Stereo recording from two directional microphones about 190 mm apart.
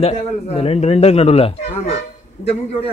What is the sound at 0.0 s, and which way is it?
A man's voice, 30° left (ahead or behind).